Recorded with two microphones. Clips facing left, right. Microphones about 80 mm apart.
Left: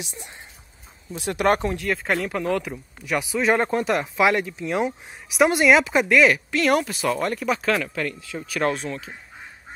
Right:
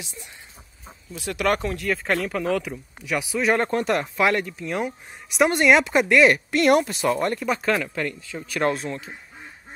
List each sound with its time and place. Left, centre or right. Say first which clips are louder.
1.1 s speech: left 3 dB; left
1.9 s speech: right 2 dB; centre
7.6 s speech: even; centre